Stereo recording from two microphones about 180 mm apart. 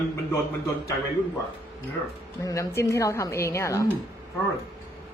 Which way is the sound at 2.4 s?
15° left (ahead or behind).